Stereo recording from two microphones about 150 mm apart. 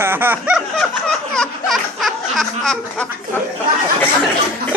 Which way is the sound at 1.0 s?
5° left (ahead or behind).